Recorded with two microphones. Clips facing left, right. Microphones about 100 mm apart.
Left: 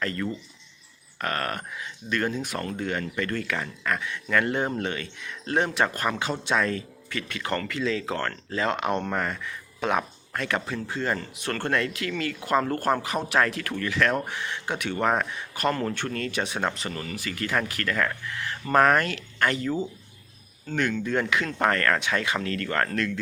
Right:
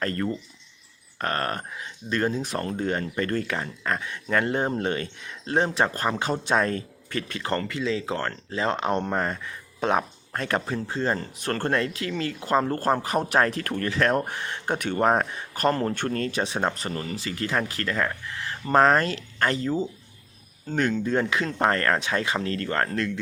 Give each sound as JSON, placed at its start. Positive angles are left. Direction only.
{"t": 0.0, "sound": "speech", "side_deg": -40}